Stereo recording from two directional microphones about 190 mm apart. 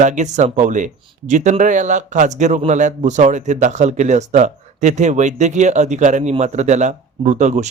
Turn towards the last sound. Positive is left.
turn(degrees=-40)  # may be behind; listen again after turning